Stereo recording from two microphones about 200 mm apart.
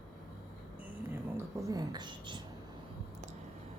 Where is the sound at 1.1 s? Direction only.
15° right (ahead or behind).